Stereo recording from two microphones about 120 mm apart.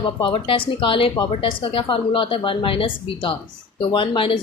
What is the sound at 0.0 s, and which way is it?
Speech, 45° left (ahead or behind).